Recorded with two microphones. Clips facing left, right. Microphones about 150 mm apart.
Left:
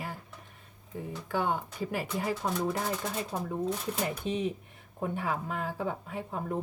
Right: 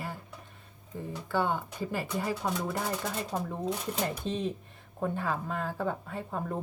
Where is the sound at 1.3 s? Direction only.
15° left (ahead or behind).